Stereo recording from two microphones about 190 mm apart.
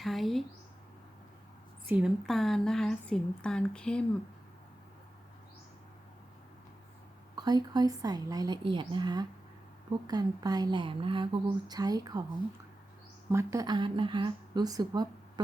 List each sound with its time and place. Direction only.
0.0 s a woman's voice: centre (ahead or behind)
1.9 s a woman's voice: 5° right (ahead or behind)
7.3 s speech: 20° right (ahead or behind)
13.3 s speech: 15° right (ahead or behind)